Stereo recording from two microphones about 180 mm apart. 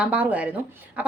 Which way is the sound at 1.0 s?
10° right (ahead or behind).